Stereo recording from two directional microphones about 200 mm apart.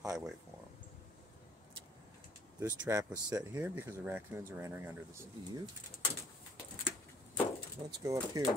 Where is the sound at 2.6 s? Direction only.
15° right (ahead or behind).